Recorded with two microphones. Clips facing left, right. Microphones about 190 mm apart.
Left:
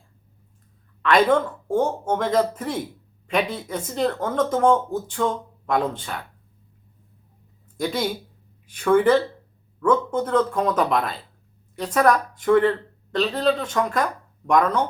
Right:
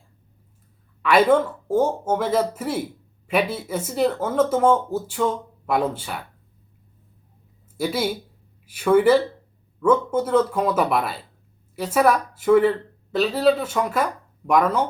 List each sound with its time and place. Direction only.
1.0 s speech: 10° right (ahead or behind)
7.8 s speech: 5° right (ahead or behind)